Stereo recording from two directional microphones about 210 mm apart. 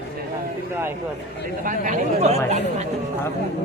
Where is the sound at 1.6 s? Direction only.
40° right (ahead or behind).